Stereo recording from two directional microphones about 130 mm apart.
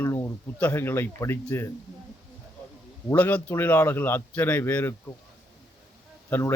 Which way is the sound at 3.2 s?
10° left (ahead or behind).